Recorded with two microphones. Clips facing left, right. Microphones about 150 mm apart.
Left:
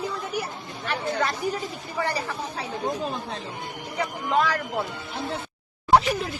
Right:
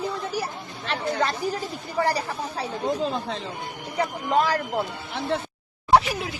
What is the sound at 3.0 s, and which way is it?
Speech, 90° right.